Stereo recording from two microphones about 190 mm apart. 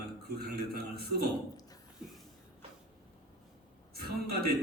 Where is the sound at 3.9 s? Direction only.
55° right (ahead or behind).